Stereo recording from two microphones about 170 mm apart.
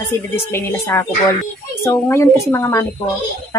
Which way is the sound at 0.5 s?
15° left (ahead or behind).